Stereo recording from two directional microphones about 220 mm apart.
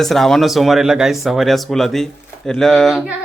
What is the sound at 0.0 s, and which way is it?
Speech, centre (ahead or behind).